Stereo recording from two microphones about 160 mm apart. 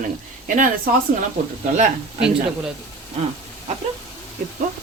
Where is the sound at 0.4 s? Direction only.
55° right (ahead or behind).